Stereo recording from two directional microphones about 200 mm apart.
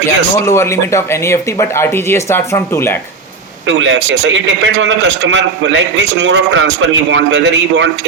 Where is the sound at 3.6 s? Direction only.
65° right (ahead or behind).